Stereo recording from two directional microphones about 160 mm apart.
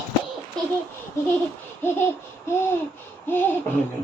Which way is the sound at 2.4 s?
15° left (ahead or behind).